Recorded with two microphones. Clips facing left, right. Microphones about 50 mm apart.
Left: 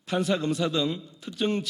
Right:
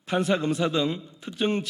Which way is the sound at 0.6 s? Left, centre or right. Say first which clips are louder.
Right 2 dB; right.